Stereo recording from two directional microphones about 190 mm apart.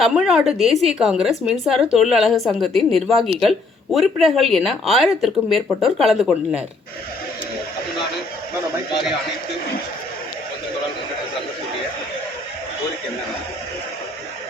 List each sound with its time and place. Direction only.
0.0 s a woman's voice: centre (ahead or behind)